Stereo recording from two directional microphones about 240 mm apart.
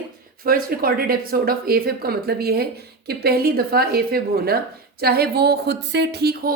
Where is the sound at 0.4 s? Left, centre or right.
Right.